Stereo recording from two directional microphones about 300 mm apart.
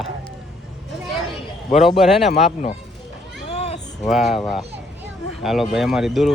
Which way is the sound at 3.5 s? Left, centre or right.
Centre.